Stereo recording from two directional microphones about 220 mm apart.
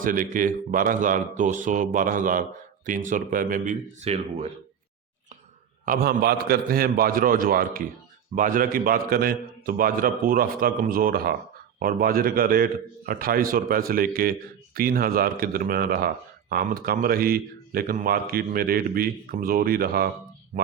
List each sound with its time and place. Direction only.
0.0 s a man's voice: 40° right (ahead or behind)
5.8 s a man's voice: 40° right (ahead or behind)